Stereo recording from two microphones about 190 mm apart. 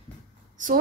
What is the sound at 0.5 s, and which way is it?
Speech, 45° right (ahead or behind).